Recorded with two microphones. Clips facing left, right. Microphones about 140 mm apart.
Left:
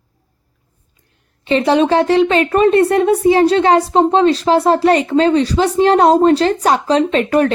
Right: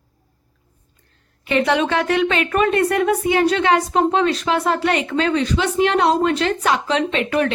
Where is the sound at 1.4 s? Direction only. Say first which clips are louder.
Left 5 dB; 30° left (ahead or behind).